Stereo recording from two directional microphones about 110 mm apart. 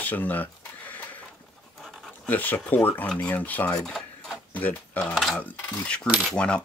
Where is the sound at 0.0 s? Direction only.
15° left (ahead or behind).